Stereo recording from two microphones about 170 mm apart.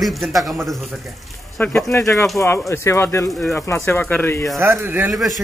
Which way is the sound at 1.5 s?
10° left (ahead or behind).